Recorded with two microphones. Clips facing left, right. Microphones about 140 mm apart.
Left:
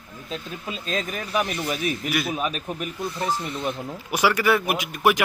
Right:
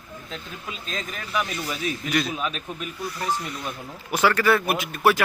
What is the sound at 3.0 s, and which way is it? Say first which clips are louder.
Speech: left 1 dB; 25° left (ahead or behind).